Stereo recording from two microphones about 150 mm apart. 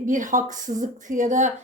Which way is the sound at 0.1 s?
60° right (ahead or behind).